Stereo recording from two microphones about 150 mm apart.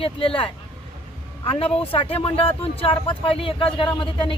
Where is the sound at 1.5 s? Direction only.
35° left (ahead or behind).